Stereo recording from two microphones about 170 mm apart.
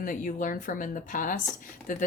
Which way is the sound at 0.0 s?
50° left (ahead or behind).